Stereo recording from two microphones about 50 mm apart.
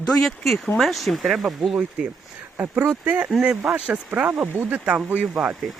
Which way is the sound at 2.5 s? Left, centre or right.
Right.